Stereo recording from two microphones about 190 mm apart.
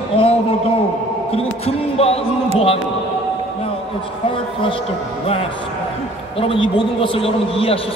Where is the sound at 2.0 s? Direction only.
30° left (ahead or behind).